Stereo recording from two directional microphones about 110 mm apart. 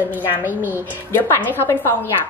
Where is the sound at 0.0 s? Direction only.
15° right (ahead or behind).